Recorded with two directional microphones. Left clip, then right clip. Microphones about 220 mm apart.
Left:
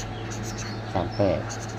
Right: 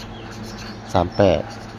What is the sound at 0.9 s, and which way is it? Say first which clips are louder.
Speech: right 8 dB; 30° right (ahead or behind).